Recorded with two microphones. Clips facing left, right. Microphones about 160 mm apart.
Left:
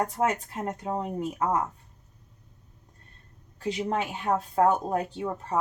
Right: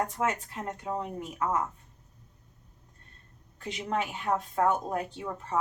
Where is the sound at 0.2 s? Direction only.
40° left (ahead or behind).